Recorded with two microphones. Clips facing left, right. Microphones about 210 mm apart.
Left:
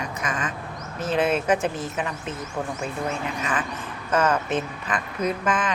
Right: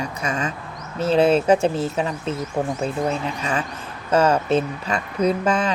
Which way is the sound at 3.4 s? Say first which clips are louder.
Right 2 dB; 25° right (ahead or behind).